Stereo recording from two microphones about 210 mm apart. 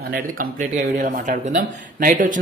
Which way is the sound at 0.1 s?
40° right (ahead or behind).